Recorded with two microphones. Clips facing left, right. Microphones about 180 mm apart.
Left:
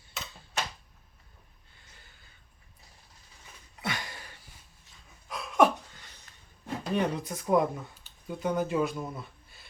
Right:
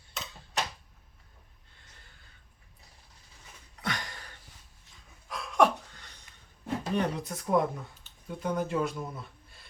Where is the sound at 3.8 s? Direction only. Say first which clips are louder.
Even; 10° left (ahead or behind).